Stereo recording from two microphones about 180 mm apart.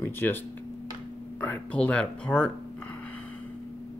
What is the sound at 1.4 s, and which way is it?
Speech, 10° left (ahead or behind).